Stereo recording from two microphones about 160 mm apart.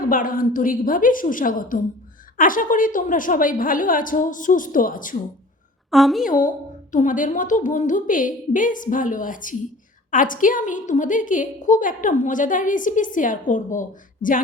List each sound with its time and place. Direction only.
0.0 s a woman's voice: 60° left (ahead or behind)
5.9 s a woman's voice: centre (ahead or behind)
6.2 s a woman's voice: 55° left (ahead or behind)